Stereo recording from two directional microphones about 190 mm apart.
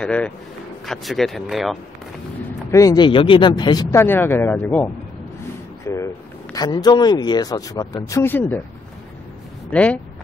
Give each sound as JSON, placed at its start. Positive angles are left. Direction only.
{"t": 0.0, "sound": "speech", "side_deg": 5}
{"t": 2.7, "sound": "speech", "side_deg": 20}
{"t": 9.7, "sound": "speech", "side_deg": 5}